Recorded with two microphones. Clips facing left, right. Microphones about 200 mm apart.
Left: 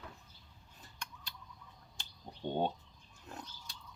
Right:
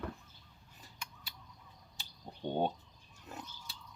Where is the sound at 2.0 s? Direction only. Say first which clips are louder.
Right 1 dB; 10° right (ahead or behind).